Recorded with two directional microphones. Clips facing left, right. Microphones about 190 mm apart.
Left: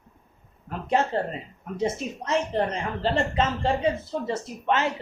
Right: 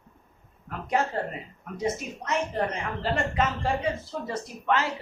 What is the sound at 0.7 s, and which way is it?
A woman's voice, 25° left (ahead or behind).